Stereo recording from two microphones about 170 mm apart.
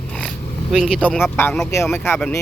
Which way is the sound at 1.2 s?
15° left (ahead or behind).